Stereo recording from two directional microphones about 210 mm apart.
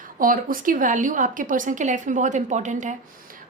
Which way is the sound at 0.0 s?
40° right (ahead or behind).